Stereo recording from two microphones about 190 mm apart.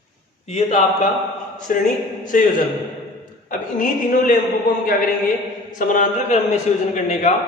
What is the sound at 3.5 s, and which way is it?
Speech, 45° left (ahead or behind).